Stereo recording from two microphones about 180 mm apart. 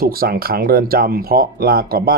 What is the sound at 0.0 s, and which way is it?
Speech, 55° right (ahead or behind).